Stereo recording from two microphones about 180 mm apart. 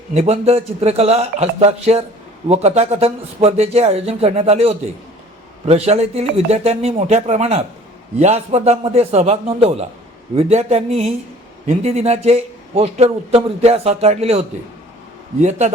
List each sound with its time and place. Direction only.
0.1 s a man's voice: 35° right (ahead or behind)